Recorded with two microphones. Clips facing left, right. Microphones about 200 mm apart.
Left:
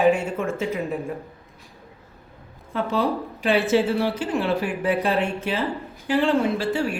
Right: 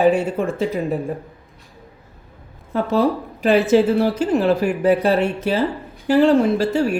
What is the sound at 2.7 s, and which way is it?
Speech, 40° right (ahead or behind).